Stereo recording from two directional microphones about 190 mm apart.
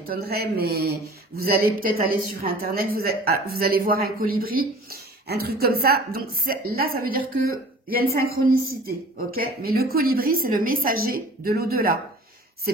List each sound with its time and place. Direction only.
0.0 s a woman's voice: 55° right (ahead or behind)